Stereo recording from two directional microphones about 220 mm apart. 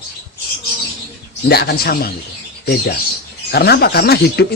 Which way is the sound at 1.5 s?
45° left (ahead or behind).